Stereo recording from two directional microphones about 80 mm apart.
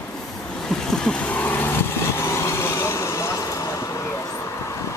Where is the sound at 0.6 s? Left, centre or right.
Centre.